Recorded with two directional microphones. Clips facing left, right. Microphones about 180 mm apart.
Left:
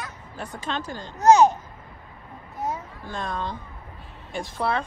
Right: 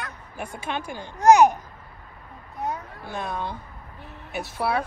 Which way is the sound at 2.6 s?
Centre (ahead or behind).